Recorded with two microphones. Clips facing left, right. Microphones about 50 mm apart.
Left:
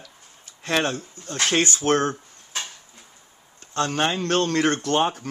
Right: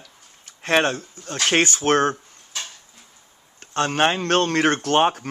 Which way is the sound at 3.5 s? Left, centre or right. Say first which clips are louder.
Right 3 dB; right.